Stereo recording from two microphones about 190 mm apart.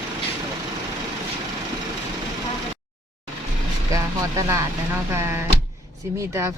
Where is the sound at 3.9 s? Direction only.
15° right (ahead or behind).